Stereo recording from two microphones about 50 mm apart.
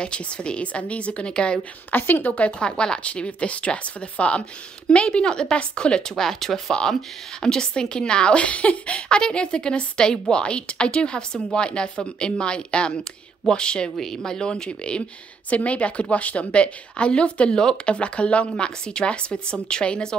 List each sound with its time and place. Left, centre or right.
0.0 s a woman's voice: left
1.9 s a woman's voice: left
2.4 s a woman's voice: left